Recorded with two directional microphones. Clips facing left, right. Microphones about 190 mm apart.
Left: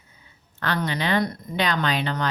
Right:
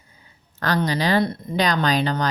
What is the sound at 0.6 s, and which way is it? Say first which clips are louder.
A woman's voice: right 4 dB; 40° right (ahead or behind).